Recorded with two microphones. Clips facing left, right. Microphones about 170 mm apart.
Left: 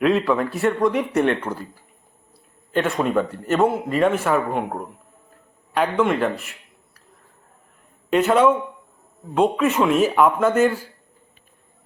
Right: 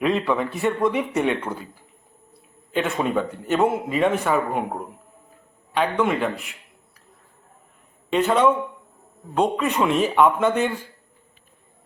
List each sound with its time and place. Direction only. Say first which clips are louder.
0.0 s a man's voice: left 3 dB; centre (ahead or behind)
2.7 s a man's voice: left 2 dB; centre (ahead or behind)
8.1 s a man's voice: left 2 dB; 5° left (ahead or behind)